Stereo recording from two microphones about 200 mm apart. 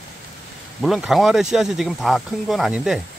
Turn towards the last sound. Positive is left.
turn(degrees=-5)  # may be behind; listen again after turning